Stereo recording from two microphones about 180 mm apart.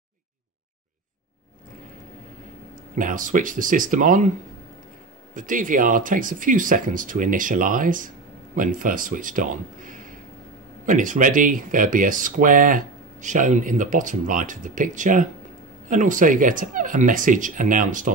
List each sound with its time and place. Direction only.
3.0 s speech: 45° right (ahead or behind)
5.3 s speech: 45° right (ahead or behind)